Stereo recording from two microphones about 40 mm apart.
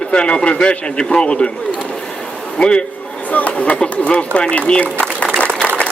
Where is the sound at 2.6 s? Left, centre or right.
Left.